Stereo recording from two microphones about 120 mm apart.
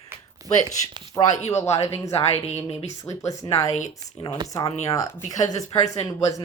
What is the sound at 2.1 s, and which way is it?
Speech, 60° left (ahead or behind).